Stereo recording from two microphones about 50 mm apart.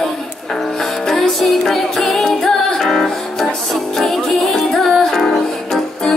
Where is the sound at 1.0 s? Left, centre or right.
Centre.